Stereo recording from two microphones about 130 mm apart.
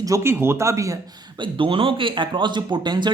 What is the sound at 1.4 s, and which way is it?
Speech, 40° right (ahead or behind).